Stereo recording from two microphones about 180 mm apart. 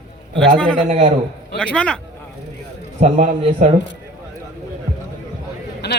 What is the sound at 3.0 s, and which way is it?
Speech, 45° right (ahead or behind).